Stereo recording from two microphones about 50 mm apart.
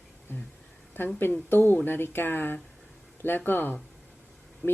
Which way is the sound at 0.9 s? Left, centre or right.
Left.